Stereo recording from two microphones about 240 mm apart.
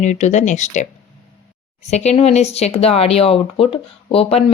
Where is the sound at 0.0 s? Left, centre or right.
Left.